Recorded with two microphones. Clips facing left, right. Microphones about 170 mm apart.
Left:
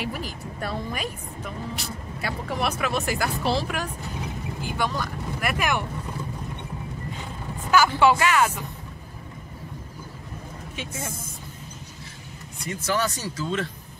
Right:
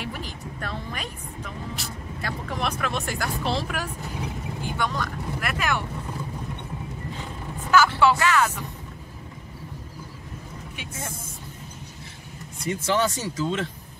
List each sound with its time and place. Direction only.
0.0 s speech: 10° left (ahead or behind)
7.7 s speech: 15° left (ahead or behind)
12.6 s speech: 25° right (ahead or behind)